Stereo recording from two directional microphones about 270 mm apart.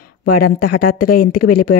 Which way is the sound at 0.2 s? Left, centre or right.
Left.